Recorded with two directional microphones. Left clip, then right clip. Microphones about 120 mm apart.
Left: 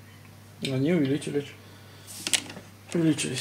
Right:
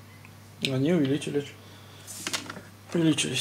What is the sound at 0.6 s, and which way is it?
Speech, 5° right (ahead or behind).